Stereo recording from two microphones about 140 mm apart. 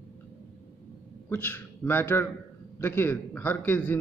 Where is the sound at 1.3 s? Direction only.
15° left (ahead or behind).